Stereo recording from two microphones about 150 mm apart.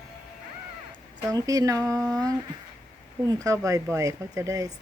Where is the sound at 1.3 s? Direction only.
25° right (ahead or behind).